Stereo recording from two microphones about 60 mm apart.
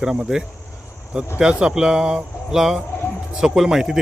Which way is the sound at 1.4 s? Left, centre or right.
Centre.